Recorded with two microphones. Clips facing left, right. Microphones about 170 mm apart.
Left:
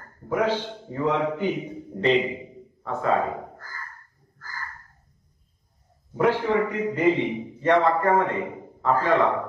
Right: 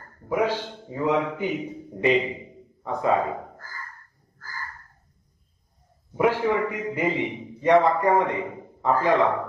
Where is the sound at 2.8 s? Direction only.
15° right (ahead or behind).